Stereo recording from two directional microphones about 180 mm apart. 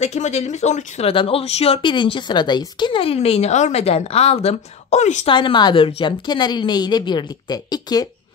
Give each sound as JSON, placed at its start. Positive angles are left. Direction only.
{"t": 0.0, "sound": "speech", "side_deg": 40}
{"t": 5.3, "sound": "a woman's voice", "side_deg": 25}